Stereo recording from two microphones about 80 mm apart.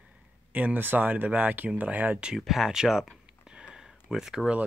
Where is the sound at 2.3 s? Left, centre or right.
Centre.